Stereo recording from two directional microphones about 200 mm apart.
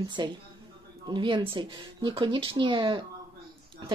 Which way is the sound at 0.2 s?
20° right (ahead or behind).